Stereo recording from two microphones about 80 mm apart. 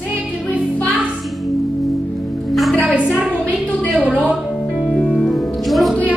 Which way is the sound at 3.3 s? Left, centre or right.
Centre.